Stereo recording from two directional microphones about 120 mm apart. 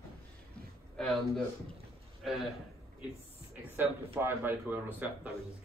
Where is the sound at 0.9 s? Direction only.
5° left (ahead or behind).